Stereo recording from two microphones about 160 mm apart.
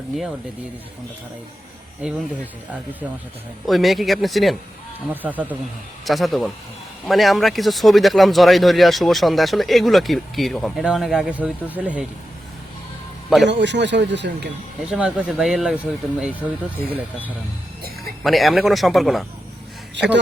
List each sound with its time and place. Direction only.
2.0 s speech: 5° right (ahead or behind)
3.7 s speech: centre (ahead or behind)
5.1 s speech: 10° right (ahead or behind)
6.1 s speech: centre (ahead or behind)
13.5 s speech: 90° right
14.8 s speech: 5° right (ahead or behind)
18.2 s speech: centre (ahead or behind)